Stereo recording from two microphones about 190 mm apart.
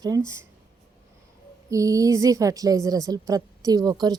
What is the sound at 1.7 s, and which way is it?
A woman's voice, 15° right (ahead or behind).